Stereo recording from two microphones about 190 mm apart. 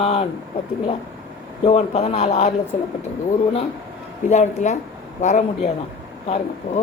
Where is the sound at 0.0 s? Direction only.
30° left (ahead or behind).